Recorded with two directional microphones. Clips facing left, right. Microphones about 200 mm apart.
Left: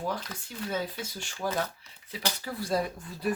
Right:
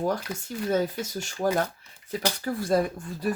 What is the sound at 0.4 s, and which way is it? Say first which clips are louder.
Speech: right 8 dB; 45° right (ahead or behind).